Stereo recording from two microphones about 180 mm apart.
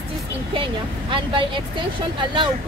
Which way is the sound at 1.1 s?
25° right (ahead or behind).